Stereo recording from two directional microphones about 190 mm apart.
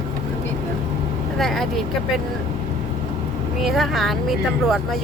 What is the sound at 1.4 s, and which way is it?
Speech, centre (ahead or behind).